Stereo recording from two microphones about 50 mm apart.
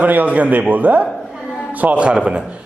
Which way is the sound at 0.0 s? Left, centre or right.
Right.